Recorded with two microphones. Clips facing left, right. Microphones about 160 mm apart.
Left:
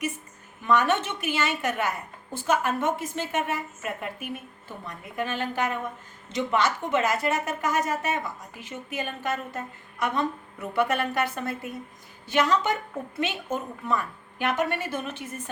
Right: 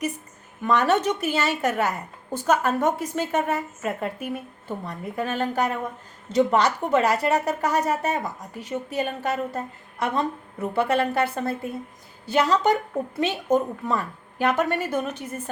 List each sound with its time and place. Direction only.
0.8 s a woman's voice: 40° right (ahead or behind)